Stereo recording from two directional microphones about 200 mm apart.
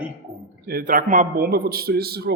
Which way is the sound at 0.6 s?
45° right (ahead or behind).